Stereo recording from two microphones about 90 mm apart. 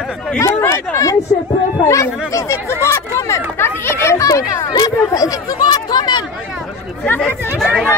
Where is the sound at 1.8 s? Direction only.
35° left (ahead or behind).